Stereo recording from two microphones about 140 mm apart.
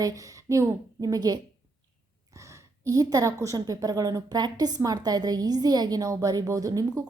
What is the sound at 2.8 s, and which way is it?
Speech, 25° right (ahead or behind).